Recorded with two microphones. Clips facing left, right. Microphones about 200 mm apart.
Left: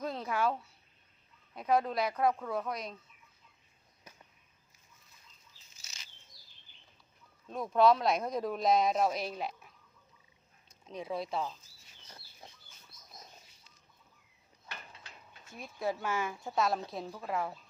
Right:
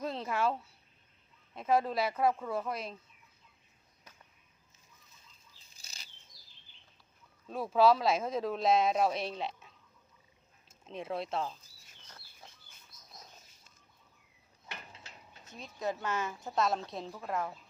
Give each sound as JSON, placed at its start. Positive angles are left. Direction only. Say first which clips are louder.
{"t": 0.0, "sound": "a sound", "louder": "even", "side_deg": 0}
{"t": 1.5, "sound": "speech", "louder": "even", "side_deg": 0}
{"t": 5.7, "sound": "bird flight", "louder": "right 1 dB", "side_deg": -35}
{"t": 7.4, "sound": "speech", "louder": "even", "side_deg": -5}
{"t": 10.7, "sound": "speech", "louder": "even", "side_deg": 0}
{"t": 14.7, "sound": "a sound", "louder": "right 1 dB", "side_deg": -25}
{"t": 15.8, "sound": "speech", "louder": "left 1 dB", "side_deg": 10}